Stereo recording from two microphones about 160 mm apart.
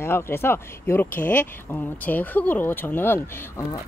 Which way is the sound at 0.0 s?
15° left (ahead or behind).